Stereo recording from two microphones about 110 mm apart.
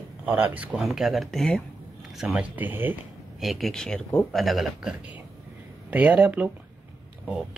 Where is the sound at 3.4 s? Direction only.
Centre (ahead or behind).